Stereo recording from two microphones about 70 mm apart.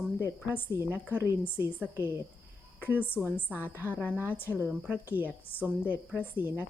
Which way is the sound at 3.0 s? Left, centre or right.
Left.